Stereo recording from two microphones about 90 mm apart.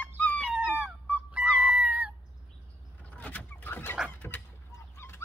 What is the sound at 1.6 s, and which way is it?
Cat, 15° right (ahead or behind).